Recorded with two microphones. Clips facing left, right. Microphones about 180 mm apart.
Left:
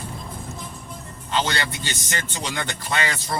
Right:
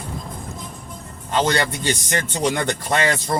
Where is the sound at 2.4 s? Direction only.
50° right (ahead or behind).